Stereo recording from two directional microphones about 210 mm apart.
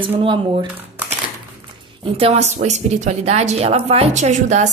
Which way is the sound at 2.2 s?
30° right (ahead or behind).